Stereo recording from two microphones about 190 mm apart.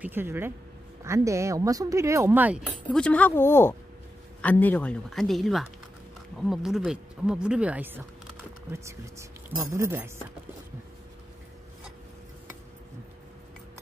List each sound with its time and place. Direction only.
0.0 s speech: 10° right (ahead or behind)
2.9 s speech: 5° left (ahead or behind)
9.6 s speech: 15° right (ahead or behind)